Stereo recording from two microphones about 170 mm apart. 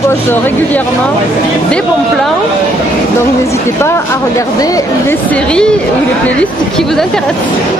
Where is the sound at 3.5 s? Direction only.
15° left (ahead or behind).